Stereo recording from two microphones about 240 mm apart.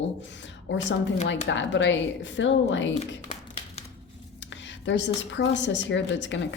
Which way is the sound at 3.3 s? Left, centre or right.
Left.